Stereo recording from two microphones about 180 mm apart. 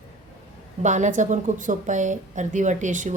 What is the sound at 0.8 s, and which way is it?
A woman's voice, 40° right (ahead or behind).